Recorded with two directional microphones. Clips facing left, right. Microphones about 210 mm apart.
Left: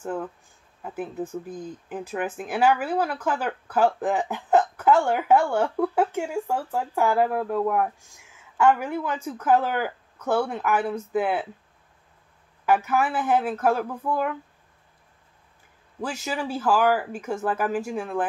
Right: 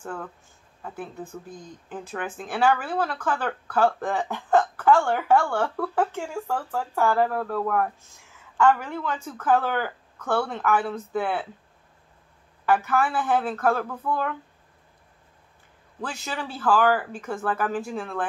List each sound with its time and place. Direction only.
0.0 s speech: 20° left (ahead or behind)
1.9 s speech: 10° left (ahead or behind)
12.6 s speech: 10° left (ahead or behind)
16.0 s speech: 10° left (ahead or behind)